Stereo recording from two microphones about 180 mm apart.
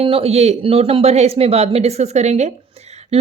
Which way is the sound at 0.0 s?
30° right (ahead or behind).